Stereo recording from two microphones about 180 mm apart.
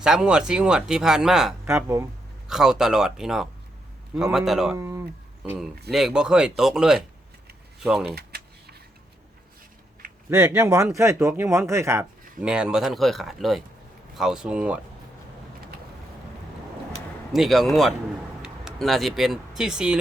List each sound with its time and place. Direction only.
0.0 s speech: 5° right (ahead or behind)
1.6 s speech: 15° right (ahead or behind)
2.5 s speech: 5° right (ahead or behind)
4.8 s speech: 15° right (ahead or behind)
5.4 s speech: centre (ahead or behind)
8.0 s keys jangling: 60° right (ahead or behind)
10.2 s speech: 15° right (ahead or behind)
12.5 s speech: 5° right (ahead or behind)
17.3 s speech: centre (ahead or behind)